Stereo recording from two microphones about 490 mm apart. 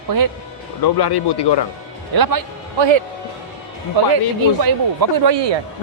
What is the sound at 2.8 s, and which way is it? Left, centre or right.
Speech, right.